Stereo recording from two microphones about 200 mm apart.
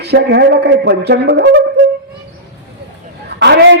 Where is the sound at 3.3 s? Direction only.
55° right (ahead or behind).